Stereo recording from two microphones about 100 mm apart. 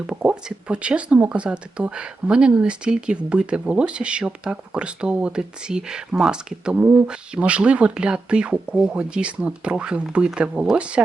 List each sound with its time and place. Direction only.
0.1 s speech: 10° right (ahead or behind)